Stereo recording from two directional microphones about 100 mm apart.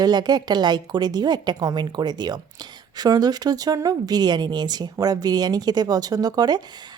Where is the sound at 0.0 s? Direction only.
45° right (ahead or behind).